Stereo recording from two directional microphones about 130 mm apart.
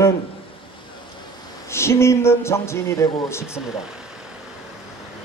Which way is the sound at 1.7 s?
20° left (ahead or behind).